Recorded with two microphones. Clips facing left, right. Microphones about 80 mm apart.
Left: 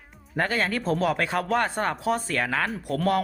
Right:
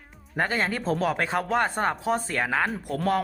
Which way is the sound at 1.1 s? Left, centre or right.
Centre.